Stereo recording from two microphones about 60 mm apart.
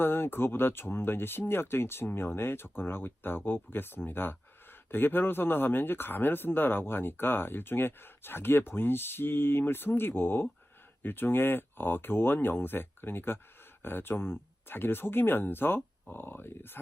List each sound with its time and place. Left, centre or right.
0.0 s speech: left